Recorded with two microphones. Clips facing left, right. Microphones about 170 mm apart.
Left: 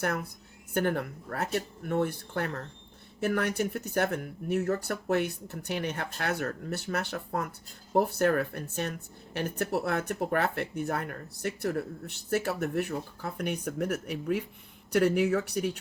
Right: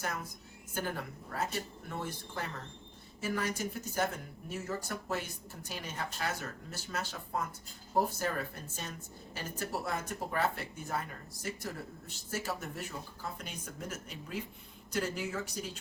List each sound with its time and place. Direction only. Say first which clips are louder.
0.0 s speech: left 8 dB; 65° left (ahead or behind)